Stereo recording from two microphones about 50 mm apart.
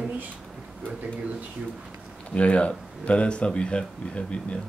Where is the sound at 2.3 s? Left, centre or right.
Left.